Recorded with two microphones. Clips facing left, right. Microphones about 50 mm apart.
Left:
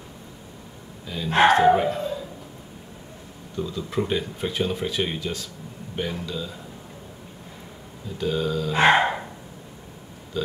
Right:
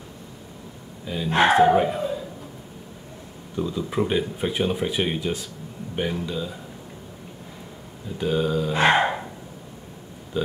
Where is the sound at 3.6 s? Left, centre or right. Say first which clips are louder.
Right 2 dB; centre.